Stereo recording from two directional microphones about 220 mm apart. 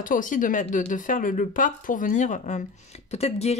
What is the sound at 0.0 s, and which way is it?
Speech, 35° left (ahead or behind).